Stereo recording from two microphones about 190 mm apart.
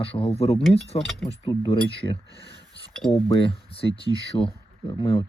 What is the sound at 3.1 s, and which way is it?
Speech, 30° left (ahead or behind).